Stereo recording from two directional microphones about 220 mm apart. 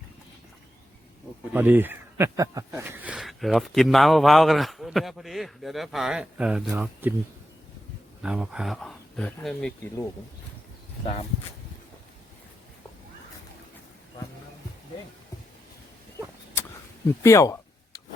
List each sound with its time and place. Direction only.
1.5 s speech: 10° right (ahead or behind)
8.2 s speech: 5° right (ahead or behind)
11.0 s speech: 30° left (ahead or behind)
17.2 s a sound: 15° left (ahead or behind)